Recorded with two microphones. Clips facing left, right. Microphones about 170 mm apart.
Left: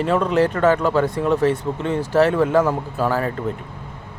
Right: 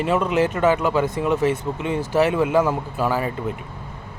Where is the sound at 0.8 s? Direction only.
5° right (ahead or behind).